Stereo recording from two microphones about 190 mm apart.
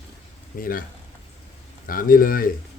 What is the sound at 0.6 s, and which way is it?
Speech, 50° left (ahead or behind).